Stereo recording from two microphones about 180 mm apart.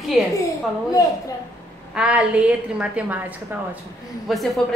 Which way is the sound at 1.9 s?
5° right (ahead or behind).